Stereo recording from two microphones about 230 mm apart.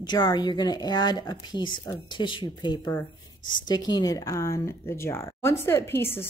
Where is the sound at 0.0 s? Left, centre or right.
Centre.